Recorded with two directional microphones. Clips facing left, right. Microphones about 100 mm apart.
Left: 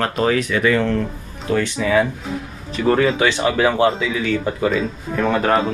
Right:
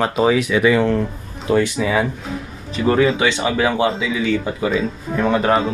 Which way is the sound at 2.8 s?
5° right (ahead or behind).